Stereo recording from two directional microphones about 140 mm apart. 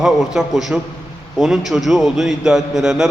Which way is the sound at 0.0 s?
Centre (ahead or behind).